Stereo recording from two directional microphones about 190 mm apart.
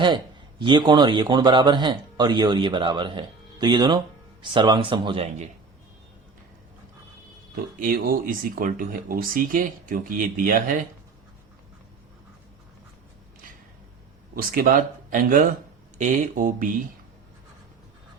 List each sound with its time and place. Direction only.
0.6 s speech: 25° right (ahead or behind)
7.5 s speech: 50° right (ahead or behind)
14.3 s speech: 50° right (ahead or behind)